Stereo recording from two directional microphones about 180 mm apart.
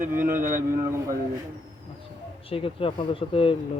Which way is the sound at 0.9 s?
15° right (ahead or behind).